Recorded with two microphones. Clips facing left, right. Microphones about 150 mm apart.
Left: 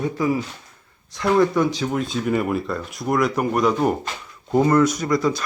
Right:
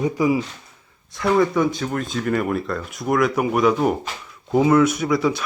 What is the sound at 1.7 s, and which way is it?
Speech, centre (ahead or behind).